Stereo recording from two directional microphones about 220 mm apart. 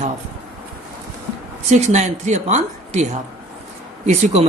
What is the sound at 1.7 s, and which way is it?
Speech, 30° right (ahead or behind).